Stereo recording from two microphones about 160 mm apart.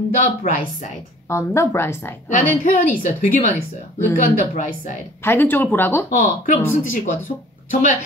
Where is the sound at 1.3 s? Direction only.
15° left (ahead or behind).